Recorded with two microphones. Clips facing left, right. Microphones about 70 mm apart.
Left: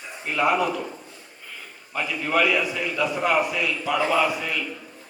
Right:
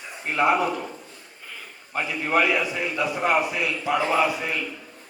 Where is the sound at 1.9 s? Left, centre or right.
Right.